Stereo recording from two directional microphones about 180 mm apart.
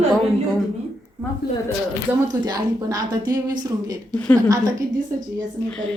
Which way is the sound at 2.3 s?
20° right (ahead or behind).